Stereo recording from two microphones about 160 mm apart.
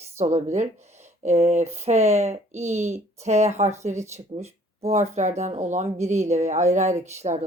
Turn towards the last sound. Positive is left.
turn(degrees=-40)  # may be behind; listen again after turning